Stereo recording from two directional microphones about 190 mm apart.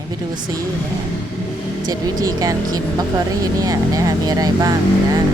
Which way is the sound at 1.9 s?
20° right (ahead or behind).